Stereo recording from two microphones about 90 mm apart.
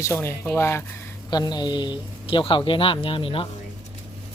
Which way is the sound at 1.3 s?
50° left (ahead or behind).